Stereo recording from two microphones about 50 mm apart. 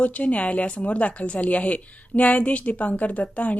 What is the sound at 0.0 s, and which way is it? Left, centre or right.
A woman's voice, left.